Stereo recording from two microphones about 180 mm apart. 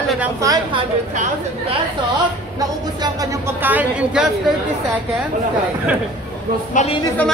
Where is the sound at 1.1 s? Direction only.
40° right (ahead or behind).